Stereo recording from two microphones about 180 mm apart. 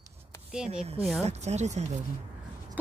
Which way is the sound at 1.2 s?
40° right (ahead or behind).